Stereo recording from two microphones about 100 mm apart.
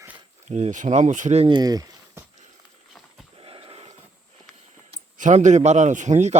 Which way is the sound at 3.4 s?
65° right (ahead or behind).